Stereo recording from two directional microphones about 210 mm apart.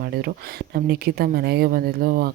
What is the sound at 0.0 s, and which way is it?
Speech, 45° right (ahead or behind).